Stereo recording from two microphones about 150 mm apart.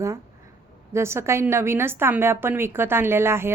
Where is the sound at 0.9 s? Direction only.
15° right (ahead or behind).